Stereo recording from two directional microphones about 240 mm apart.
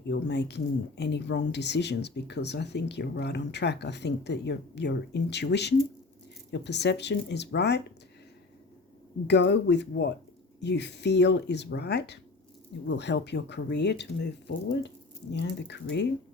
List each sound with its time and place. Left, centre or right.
0.1 s speech: left
9.2 s speech: left